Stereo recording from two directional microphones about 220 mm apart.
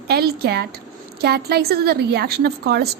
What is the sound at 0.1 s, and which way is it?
A woman's voice, 45° right (ahead or behind).